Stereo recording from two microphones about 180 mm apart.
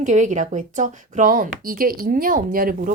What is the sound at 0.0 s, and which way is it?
Speech, 40° right (ahead or behind).